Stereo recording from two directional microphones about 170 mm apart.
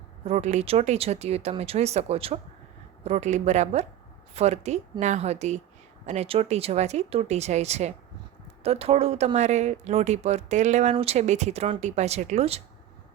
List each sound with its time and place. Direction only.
0.3 s a woman's voice: 45° right (ahead or behind)